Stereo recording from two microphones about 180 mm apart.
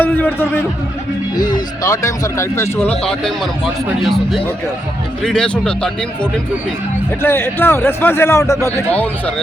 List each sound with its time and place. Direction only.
0.0 s a sound: 10° left (ahead or behind)
1.4 s speech: 20° left (ahead or behind)
3.0 s speech: centre (ahead or behind)
7.2 s speech: 15° left (ahead or behind)